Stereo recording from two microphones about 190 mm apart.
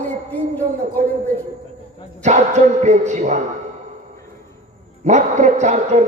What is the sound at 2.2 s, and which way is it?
A man's voice, 40° right (ahead or behind).